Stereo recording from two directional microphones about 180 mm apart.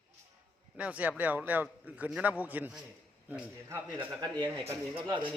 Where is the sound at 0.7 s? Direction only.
5° right (ahead or behind).